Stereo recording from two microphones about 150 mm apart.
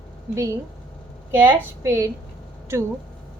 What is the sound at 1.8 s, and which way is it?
Speech, 20° right (ahead or behind).